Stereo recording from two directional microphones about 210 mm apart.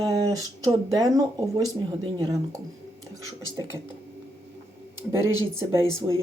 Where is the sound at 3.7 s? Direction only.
10° right (ahead or behind).